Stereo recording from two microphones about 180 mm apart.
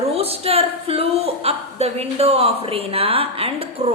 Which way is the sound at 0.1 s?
35° right (ahead or behind).